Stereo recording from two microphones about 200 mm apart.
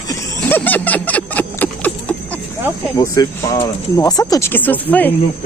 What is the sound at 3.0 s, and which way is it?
Speech, 20° left (ahead or behind).